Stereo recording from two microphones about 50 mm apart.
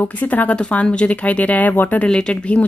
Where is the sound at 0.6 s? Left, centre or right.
Left.